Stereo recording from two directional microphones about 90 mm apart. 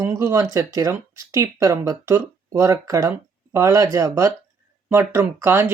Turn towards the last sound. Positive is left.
turn(degrees=-30)  # may be behind; listen again after turning